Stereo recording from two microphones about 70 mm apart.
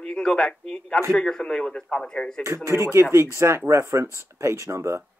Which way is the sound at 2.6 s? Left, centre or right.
Right.